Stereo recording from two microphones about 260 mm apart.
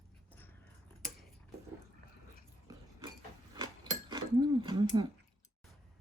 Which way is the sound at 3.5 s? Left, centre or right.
Centre.